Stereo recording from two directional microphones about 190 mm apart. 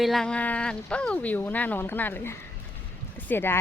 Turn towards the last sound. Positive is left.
turn(degrees=10)  # may be behind; listen again after turning